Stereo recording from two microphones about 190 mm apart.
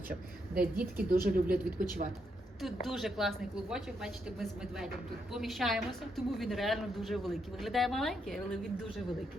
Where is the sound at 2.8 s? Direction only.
Centre (ahead or behind).